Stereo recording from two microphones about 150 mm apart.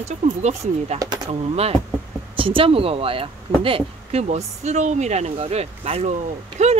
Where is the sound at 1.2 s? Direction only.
45° right (ahead or behind).